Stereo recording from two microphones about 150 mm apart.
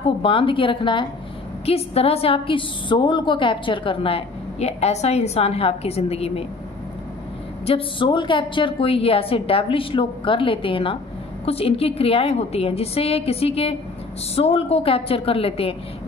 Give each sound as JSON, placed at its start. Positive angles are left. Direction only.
{"t": 0.2, "sound": "a woman's voice", "side_deg": 35}
{"t": 7.6, "sound": "a woman's voice", "side_deg": 35}